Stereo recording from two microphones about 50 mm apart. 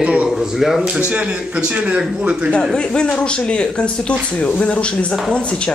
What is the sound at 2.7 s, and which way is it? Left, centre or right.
A man's voice, centre.